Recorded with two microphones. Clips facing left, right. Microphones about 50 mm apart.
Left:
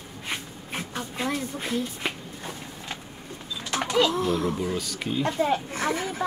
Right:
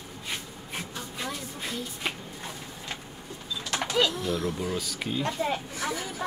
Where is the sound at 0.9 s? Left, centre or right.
Left.